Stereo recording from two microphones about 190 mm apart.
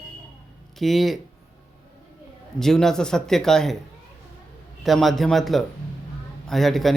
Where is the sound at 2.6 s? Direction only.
Centre (ahead or behind).